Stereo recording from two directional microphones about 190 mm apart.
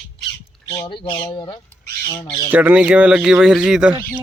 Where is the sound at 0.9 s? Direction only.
25° left (ahead or behind).